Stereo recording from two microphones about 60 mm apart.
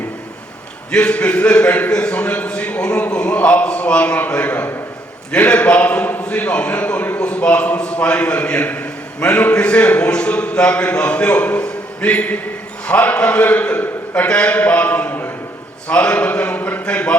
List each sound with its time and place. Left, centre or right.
0.9 s a man's voice: centre
14.3 s a man's voice: centre
16.6 s a sound: left
16.8 s a man's voice: left